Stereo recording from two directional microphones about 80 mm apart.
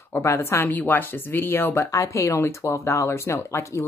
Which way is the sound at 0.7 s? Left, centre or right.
Left.